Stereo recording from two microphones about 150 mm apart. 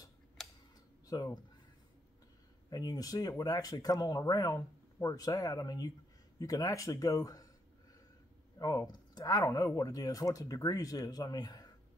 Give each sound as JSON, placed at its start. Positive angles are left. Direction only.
{"t": 0.4, "sound": "a sound", "side_deg": 0}
{"t": 1.0, "sound": "speech", "side_deg": 25}
{"t": 2.7, "sound": "speech", "side_deg": 25}
{"t": 8.5, "sound": "speech", "side_deg": 25}